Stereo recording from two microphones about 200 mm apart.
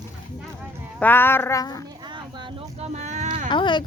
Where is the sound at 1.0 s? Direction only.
10° left (ahead or behind).